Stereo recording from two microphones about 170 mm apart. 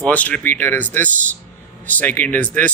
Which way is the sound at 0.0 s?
10° left (ahead or behind).